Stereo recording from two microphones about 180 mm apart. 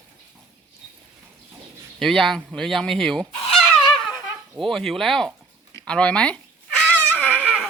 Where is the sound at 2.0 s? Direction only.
Centre (ahead or behind).